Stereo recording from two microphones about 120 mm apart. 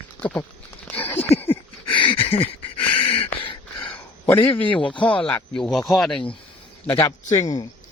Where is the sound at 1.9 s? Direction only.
45° left (ahead or behind).